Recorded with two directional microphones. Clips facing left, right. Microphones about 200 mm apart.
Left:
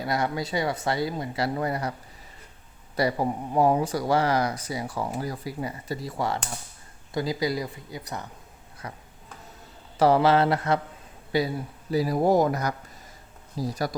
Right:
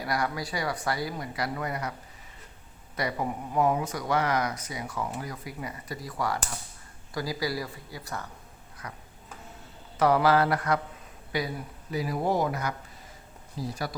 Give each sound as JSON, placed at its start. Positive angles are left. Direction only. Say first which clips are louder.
{"t": 0.0, "sound": "speech", "louder": "left 3 dB", "side_deg": 25}
{"t": 2.9, "sound": "speech", "louder": "left 6 dB", "side_deg": 35}
{"t": 10.0, "sound": "speech", "louder": "left 3 dB", "side_deg": 30}